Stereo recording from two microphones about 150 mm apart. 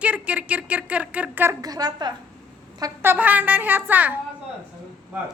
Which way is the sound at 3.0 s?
15° right (ahead or behind).